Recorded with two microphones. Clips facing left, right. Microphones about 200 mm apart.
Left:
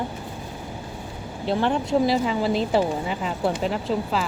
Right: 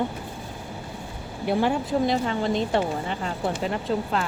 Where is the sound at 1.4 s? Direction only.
10° right (ahead or behind).